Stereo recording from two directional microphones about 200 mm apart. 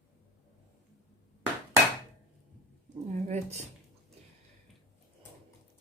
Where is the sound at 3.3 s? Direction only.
35° right (ahead or behind).